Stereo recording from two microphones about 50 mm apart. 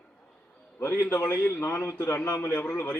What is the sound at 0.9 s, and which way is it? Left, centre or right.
Speech, left.